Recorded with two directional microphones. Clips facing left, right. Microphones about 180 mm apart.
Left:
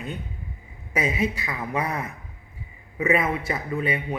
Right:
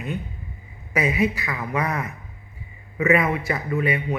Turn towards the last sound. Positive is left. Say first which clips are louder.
# right 3 dB
turn(degrees=30)  # may be behind; listen again after turning